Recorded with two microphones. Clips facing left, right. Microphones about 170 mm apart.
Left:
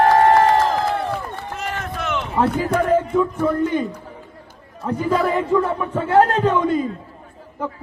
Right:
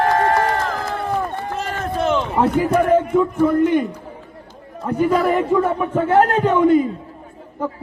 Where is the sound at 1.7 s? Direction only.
35° right (ahead or behind).